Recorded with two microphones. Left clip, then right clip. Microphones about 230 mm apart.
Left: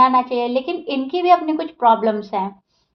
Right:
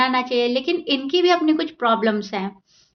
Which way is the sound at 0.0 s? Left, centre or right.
Right.